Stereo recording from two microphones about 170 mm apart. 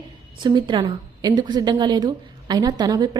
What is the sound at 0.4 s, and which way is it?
Speech, 30° right (ahead or behind).